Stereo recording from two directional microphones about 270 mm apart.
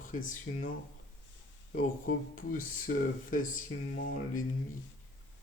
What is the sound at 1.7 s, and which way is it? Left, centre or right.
Speech, left.